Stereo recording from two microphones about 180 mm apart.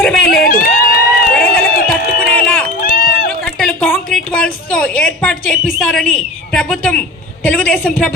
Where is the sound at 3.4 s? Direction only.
5° left (ahead or behind).